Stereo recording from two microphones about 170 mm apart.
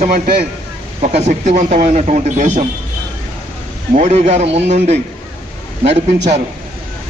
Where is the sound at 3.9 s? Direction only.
40° right (ahead or behind).